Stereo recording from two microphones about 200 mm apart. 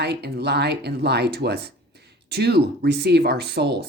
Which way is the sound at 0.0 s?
55° right (ahead or behind).